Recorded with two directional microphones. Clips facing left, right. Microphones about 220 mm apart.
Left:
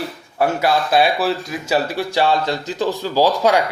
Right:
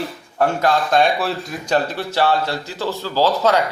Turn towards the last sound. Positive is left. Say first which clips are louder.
# left 1 dB
turn(degrees=15)  # may be behind; listen again after turning